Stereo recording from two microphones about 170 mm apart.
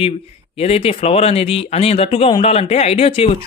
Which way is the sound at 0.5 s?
35° left (ahead or behind).